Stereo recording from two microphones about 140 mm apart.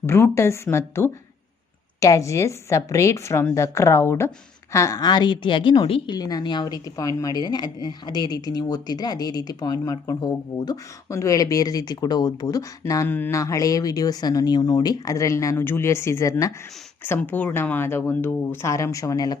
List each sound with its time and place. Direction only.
0.0 s a woman's voice: 15° left (ahead or behind)